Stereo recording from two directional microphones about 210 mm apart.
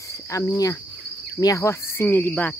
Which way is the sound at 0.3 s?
15° left (ahead or behind).